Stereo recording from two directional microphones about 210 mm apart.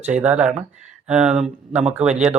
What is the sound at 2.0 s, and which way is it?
Speech, 30° right (ahead or behind).